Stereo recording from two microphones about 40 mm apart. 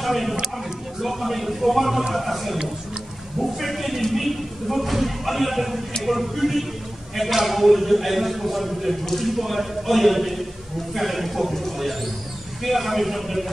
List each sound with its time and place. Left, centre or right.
0.0 s speech: centre